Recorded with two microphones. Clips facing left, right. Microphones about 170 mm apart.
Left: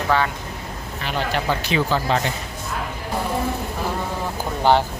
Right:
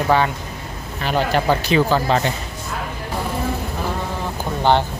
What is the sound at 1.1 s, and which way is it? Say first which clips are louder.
Speech: right 5 dB; 40° right (ahead or behind).